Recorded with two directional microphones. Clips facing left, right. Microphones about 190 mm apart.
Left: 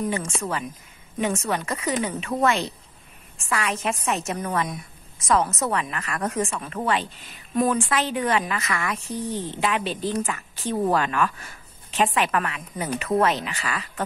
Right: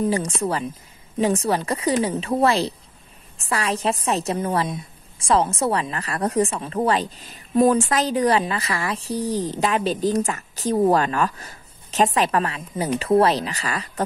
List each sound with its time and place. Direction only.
0.0 s a woman's voice: 35° right (ahead or behind)